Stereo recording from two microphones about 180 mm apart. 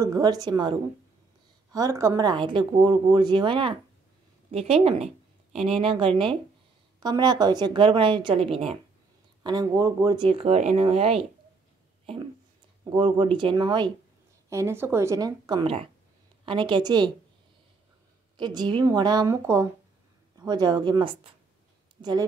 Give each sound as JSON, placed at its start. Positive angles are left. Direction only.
{"t": 0.0, "sound": "a woman's voice", "side_deg": -20}
{"t": 9.4, "sound": "speech", "side_deg": -20}
{"t": 12.9, "sound": "speech", "side_deg": -25}
{"t": 14.5, "sound": "speech", "side_deg": -15}
{"t": 18.4, "sound": "speech", "side_deg": -25}